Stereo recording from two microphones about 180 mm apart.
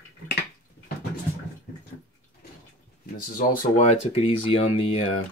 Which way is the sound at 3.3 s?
50° left (ahead or behind).